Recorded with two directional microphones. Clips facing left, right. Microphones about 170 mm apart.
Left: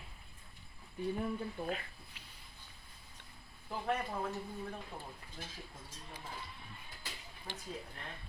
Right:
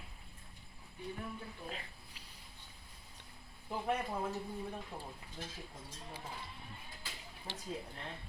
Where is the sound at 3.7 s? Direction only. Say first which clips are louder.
Right 1 dB; 15° right (ahead or behind).